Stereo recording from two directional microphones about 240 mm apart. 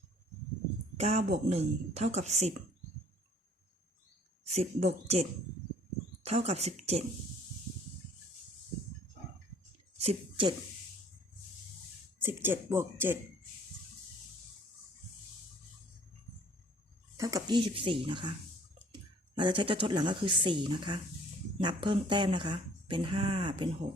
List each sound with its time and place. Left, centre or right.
0.9 s speech: right
4.4 s speech: right
6.2 s speech: right
10.0 s speech: right
12.2 s speech: centre
17.2 s speech: centre
19.4 s speech: centre